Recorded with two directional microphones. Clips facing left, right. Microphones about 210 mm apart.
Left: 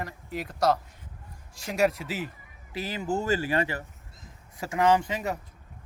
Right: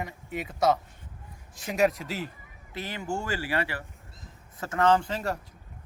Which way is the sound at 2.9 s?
20° left (ahead or behind).